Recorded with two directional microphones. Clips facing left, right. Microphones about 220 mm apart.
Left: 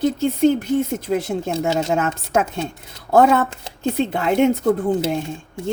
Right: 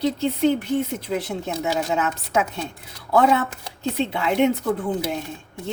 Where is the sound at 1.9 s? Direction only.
50° left (ahead or behind).